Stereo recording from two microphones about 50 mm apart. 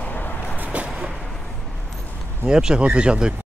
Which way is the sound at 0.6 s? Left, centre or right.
Right.